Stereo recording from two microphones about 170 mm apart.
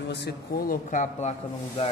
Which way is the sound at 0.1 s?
75° left (ahead or behind).